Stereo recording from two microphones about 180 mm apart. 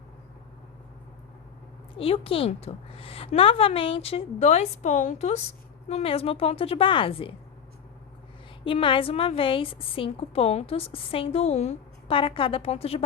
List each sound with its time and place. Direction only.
2.0 s a woman's voice: 30° left (ahead or behind)
8.6 s a woman's voice: 30° left (ahead or behind)